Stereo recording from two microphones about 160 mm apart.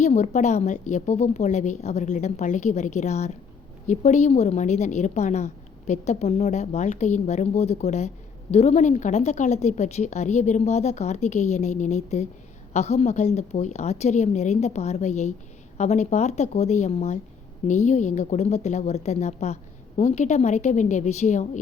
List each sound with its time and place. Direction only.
0.0 s a woman's voice: 45° left (ahead or behind)